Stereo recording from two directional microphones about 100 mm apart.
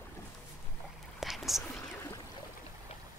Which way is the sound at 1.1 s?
Centre (ahead or behind).